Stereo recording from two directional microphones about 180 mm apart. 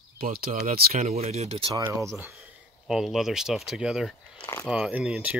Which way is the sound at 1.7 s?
15° right (ahead or behind).